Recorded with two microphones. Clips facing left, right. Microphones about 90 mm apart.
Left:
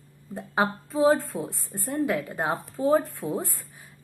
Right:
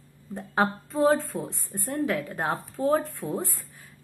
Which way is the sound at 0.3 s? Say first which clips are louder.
Even; centre (ahead or behind).